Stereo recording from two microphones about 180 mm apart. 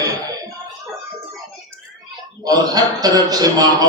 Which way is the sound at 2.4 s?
20° right (ahead or behind).